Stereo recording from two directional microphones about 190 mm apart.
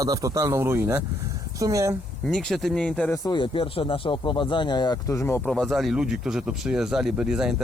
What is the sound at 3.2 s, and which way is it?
Speech, 25° left (ahead or behind).